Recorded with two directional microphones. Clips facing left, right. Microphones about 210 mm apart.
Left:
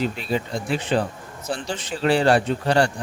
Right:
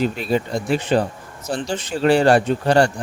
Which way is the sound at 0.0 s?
45° right (ahead or behind).